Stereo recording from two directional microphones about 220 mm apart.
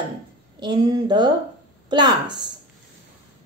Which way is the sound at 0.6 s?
20° right (ahead or behind).